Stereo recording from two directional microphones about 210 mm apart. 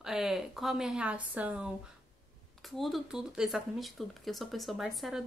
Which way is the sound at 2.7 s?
Centre (ahead or behind).